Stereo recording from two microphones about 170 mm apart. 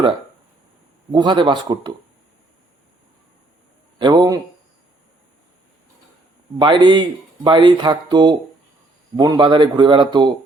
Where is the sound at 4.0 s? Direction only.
25° right (ahead or behind).